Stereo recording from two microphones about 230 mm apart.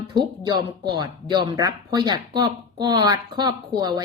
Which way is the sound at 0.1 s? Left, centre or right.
Centre.